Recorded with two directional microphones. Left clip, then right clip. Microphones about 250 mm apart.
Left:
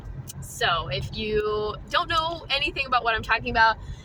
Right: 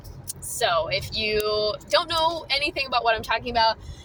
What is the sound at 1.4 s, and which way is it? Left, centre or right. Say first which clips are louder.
Speech: right 3 dB; left.